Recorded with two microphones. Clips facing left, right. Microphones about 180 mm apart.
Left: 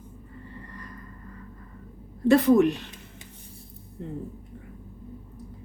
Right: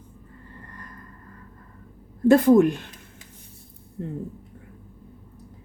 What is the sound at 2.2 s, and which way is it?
Speech, 45° right (ahead or behind).